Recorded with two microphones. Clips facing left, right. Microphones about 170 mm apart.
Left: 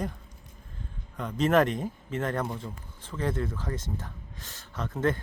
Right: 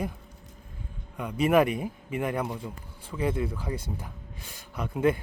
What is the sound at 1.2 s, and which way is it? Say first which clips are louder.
Speech: right 1 dB; 10° right (ahead or behind).